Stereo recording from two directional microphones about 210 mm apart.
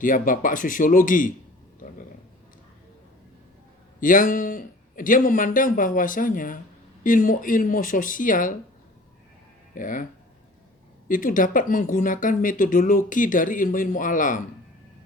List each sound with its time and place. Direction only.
0.0 s speech: 40° left (ahead or behind)
4.0 s speech: 40° left (ahead or behind)
9.7 s speech: 40° left (ahead or behind)
11.1 s speech: 40° left (ahead or behind)